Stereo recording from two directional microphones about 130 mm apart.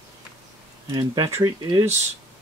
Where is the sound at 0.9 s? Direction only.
35° right (ahead or behind).